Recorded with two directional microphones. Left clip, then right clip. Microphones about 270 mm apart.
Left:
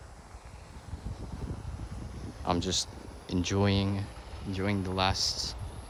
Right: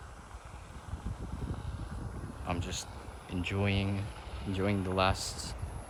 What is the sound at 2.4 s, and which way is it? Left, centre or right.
Speech, centre.